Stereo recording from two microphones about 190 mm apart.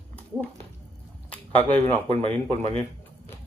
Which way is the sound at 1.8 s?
35° right (ahead or behind).